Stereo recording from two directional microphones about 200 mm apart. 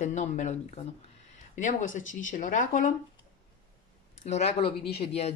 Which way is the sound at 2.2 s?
40° left (ahead or behind).